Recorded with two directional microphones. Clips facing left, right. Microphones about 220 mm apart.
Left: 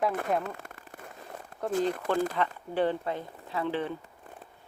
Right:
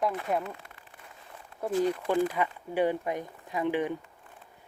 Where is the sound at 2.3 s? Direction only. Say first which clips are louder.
Even; 10° right (ahead or behind).